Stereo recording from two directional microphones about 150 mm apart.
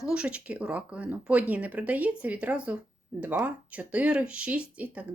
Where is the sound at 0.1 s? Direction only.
5° right (ahead or behind).